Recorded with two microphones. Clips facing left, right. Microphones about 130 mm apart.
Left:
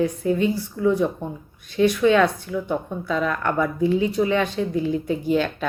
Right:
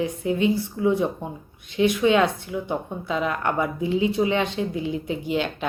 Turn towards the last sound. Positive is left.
turn(degrees=-20)  # may be behind; listen again after turning